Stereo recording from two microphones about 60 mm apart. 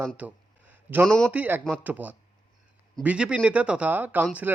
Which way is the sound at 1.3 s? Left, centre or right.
Right.